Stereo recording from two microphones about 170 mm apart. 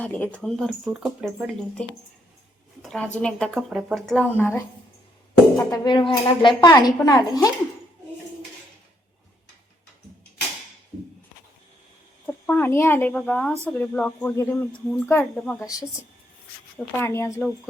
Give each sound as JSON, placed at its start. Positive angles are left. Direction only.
{"t": 0.0, "sound": "a woman's voice", "side_deg": 10}
{"t": 2.8, "sound": "a woman's voice", "side_deg": 5}
{"t": 4.4, "sound": "speech", "side_deg": 15}
{"t": 5.5, "sound": "speech", "side_deg": 25}
{"t": 12.2, "sound": "speech", "side_deg": 10}
{"t": 17.0, "sound": "speech", "side_deg": 15}